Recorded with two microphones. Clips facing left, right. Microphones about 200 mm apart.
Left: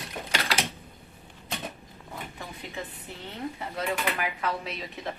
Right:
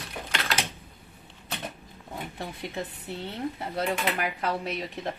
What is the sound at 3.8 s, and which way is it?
Speech, 35° right (ahead or behind).